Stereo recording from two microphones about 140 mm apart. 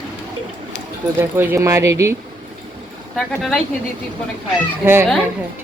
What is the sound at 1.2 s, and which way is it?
Speech, 15° right (ahead or behind).